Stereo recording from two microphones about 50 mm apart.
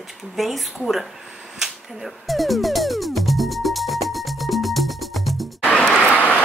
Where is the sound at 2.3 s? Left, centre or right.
Centre.